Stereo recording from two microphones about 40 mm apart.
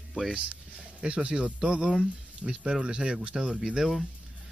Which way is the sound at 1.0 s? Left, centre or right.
Right.